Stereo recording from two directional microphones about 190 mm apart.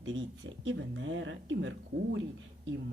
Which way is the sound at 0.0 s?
75° right (ahead or behind).